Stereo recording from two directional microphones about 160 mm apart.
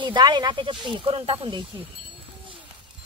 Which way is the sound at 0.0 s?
30° right (ahead or behind).